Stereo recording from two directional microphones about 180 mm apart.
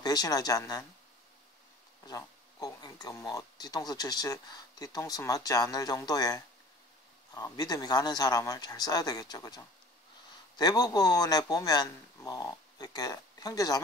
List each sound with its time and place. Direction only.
0.0 s speech: 20° left (ahead or behind)
2.0 s speech: 20° left (ahead or behind)